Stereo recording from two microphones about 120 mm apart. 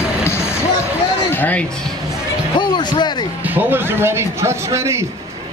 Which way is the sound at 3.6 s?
20° right (ahead or behind).